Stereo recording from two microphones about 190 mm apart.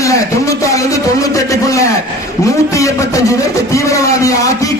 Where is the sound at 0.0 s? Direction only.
15° left (ahead or behind).